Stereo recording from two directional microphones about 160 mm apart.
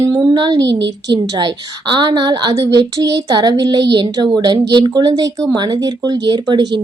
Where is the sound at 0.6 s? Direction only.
90° right.